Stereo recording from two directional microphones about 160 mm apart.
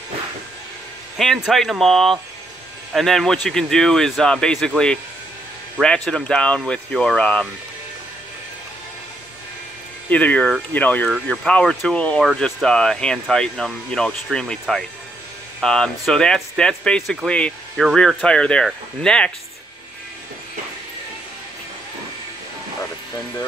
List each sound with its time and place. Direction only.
1.1 s speech: centre (ahead or behind)
10.0 s speech: 10° left (ahead or behind)